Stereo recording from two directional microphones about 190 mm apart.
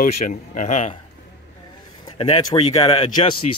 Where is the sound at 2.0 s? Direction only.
30° left (ahead or behind).